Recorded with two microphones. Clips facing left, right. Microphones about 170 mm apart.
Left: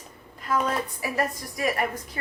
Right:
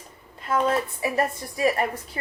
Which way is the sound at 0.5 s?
25° right (ahead or behind).